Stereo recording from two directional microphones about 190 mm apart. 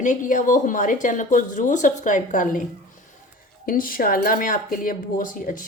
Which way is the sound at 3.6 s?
50° left (ahead or behind).